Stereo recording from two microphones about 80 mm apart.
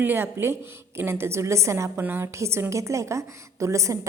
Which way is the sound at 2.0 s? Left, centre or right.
Right.